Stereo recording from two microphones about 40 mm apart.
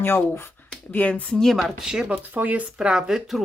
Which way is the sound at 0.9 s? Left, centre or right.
Left.